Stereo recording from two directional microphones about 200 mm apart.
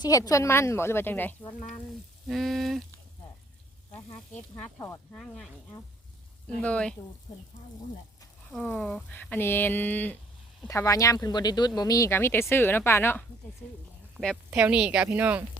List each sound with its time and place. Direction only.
0.0 s speech: 15° left (ahead or behind); by 2.8 s centre (ahead or behind)
4.6 s speech: 10° left (ahead or behind)
6.6 s speech: 5° left (ahead or behind)
8.5 s speech: 5° left (ahead or behind)
14.2 s speech: centre (ahead or behind)